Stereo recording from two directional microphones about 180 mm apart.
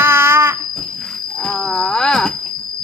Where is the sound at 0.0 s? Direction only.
15° right (ahead or behind).